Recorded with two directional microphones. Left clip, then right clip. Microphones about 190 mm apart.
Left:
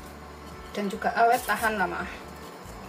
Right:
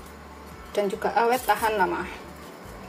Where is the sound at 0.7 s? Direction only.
30° right (ahead or behind).